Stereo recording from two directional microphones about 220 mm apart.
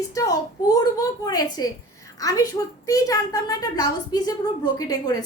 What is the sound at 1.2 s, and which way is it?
A woman's voice, 15° left (ahead or behind).